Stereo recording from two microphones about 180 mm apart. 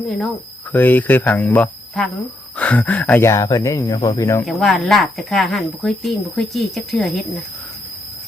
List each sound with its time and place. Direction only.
0.7 s speech: 10° left (ahead or behind)
4.4 s speech: centre (ahead or behind)